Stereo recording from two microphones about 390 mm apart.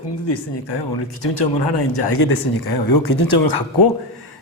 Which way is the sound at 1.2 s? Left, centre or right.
Left.